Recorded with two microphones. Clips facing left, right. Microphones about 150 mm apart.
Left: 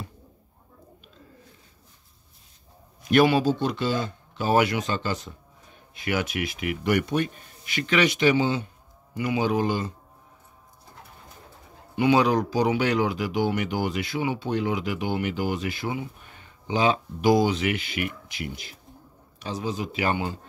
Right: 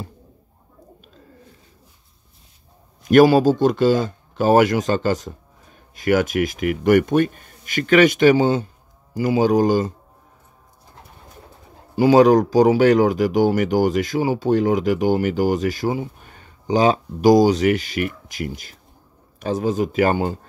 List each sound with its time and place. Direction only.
3.0 s a man's voice: 45° right (ahead or behind)
11.9 s speech: 35° right (ahead or behind)